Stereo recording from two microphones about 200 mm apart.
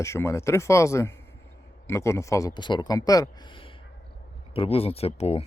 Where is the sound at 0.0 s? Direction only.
15° left (ahead or behind).